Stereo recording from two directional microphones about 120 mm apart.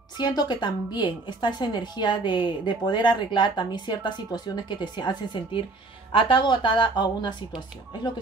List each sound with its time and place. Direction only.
0.2 s a woman's voice: 35° left (ahead or behind)